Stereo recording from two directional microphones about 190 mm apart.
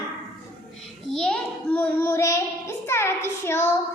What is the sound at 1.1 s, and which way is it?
Speech, 5° left (ahead or behind).